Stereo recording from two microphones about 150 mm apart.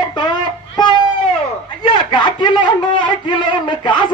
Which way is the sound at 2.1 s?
30° left (ahead or behind).